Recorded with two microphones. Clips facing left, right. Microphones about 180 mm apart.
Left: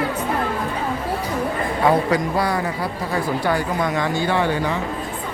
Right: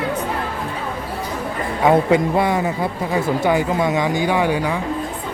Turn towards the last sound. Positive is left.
turn(degrees=-10)  # may be behind; listen again after turning